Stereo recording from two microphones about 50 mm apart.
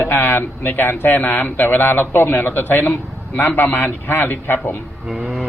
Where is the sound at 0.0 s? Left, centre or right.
Left.